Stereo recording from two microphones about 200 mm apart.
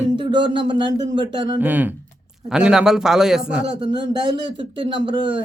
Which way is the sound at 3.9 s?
20° right (ahead or behind).